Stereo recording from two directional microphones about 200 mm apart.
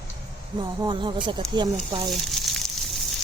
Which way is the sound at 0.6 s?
25° right (ahead or behind).